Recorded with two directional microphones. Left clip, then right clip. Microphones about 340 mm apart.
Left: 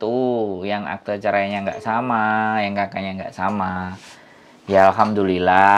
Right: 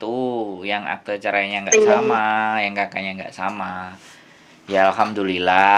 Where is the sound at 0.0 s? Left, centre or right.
Left.